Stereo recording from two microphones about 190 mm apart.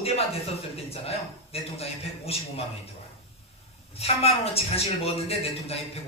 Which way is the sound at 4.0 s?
35° left (ahead or behind).